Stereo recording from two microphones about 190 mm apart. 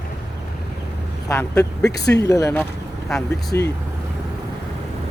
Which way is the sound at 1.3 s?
15° left (ahead or behind).